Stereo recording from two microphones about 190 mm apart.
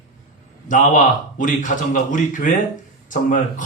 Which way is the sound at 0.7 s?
40° left (ahead or behind).